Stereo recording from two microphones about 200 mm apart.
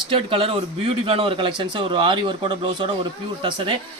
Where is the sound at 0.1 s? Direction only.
25° right (ahead or behind).